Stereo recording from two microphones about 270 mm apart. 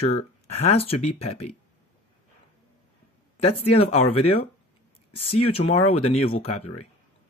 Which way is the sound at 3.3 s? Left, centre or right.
Left.